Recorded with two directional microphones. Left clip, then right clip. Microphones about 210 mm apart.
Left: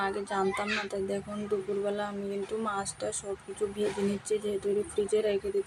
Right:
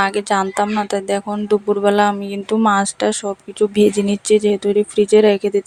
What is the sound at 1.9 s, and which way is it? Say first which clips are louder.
Speech: right 18 dB; 45° right (ahead or behind).